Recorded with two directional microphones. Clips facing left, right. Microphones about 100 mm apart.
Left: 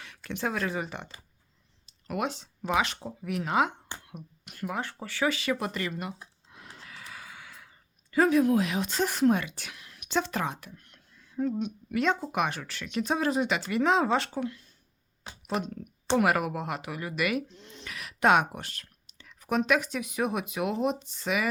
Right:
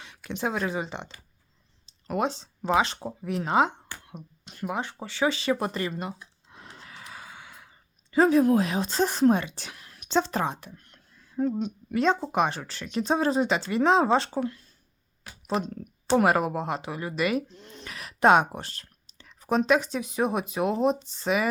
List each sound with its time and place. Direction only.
0.3 s speech: 20° right (ahead or behind)
6.5 s a sound: 30° right (ahead or behind)
11.6 s speech: 35° right (ahead or behind)